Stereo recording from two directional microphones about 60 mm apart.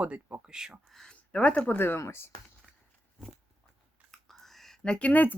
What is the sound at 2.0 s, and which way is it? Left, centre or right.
Speech, left.